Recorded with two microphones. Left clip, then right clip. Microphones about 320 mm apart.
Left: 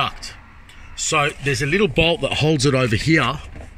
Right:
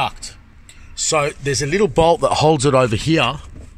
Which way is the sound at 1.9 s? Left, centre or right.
Right.